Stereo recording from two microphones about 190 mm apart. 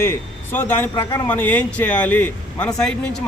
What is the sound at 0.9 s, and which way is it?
Speech, 20° left (ahead or behind).